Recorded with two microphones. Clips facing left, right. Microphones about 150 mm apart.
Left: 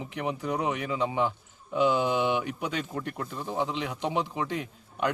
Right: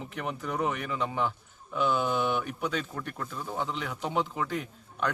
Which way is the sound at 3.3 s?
30° left (ahead or behind).